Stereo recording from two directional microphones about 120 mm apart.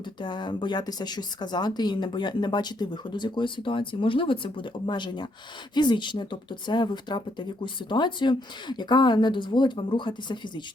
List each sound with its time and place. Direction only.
0.2 s speech: 40° left (ahead or behind)